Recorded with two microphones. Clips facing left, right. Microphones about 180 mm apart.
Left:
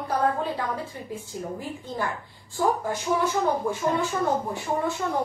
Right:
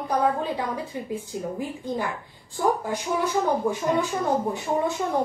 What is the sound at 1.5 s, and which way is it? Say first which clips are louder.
A woman's voice: right 4 dB; 15° right (ahead or behind).